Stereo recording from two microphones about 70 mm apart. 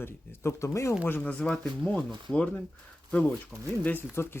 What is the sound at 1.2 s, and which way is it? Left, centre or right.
Speech, centre.